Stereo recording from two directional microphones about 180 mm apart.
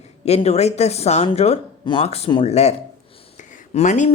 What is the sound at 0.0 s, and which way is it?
Speech, 35° left (ahead or behind).